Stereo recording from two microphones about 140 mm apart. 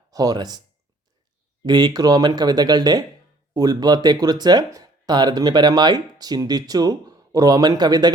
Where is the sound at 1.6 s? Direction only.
30° right (ahead or behind).